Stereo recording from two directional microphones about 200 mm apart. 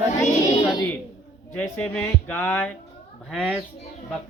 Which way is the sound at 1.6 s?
5° left (ahead or behind).